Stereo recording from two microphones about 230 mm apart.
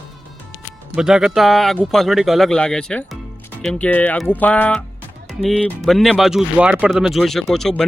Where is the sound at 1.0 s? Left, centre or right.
Centre.